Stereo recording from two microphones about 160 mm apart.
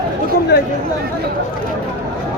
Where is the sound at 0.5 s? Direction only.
90° left.